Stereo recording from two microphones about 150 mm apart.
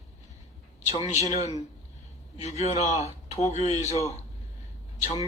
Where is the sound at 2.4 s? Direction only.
45° left (ahead or behind).